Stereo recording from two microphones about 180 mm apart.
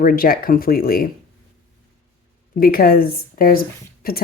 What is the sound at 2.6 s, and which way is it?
Speech, 55° left (ahead or behind).